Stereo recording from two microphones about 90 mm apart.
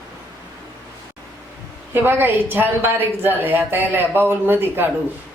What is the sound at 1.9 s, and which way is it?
Speech, 25° right (ahead or behind).